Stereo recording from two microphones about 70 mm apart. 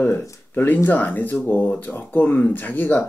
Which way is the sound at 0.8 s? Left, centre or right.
Left.